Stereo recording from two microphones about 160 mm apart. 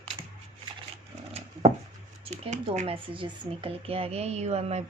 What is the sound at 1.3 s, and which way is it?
Chopping, 40° right (ahead or behind).